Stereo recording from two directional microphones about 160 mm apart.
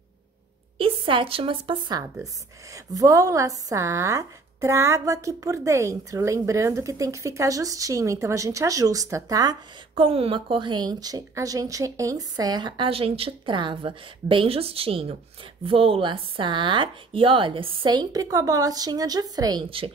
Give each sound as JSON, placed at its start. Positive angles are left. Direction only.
{"t": 0.7, "sound": "a woman's voice", "side_deg": -35}